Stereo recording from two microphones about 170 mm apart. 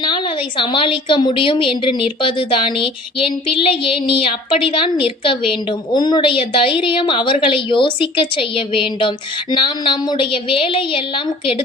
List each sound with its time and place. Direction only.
0.6 s a woman's voice: 30° left (ahead or behind)